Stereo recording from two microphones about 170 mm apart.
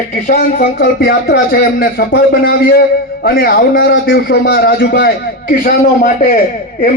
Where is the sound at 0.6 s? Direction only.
80° left.